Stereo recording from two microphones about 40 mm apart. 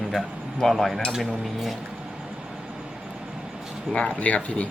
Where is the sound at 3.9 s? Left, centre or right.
Left.